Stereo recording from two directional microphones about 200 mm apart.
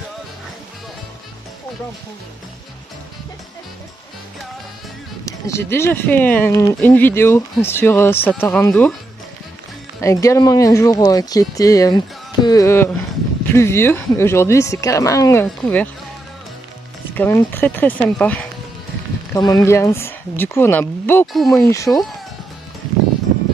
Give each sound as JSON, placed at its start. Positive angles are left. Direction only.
{"t": 5.2, "sound": "speech", "side_deg": 15}
{"t": 10.0, "sound": "speech", "side_deg": 15}
{"t": 17.1, "sound": "speech", "side_deg": 10}
{"t": 21.3, "sound": "speech", "side_deg": 0}
{"t": 21.6, "sound": "speech", "side_deg": 15}